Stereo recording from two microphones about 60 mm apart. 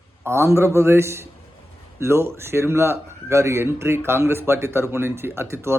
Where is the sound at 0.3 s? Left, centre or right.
Right.